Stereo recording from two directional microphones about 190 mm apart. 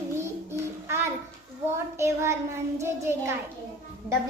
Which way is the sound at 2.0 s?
15° right (ahead or behind).